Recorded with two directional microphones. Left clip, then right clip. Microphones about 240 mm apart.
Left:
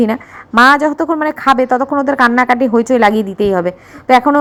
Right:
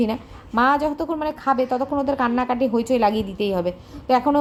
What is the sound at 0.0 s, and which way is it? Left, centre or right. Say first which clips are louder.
A woman's voice: left 9 dB; left.